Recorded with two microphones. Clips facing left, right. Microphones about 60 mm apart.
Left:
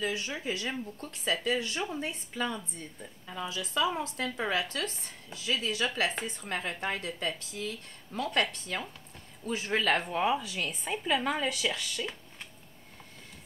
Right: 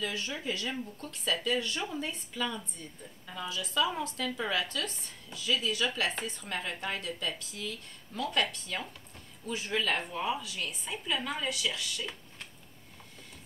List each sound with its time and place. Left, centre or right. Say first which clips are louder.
0.0 s speech: left 2 dB; centre
4.2 s speech: left 1 dB; left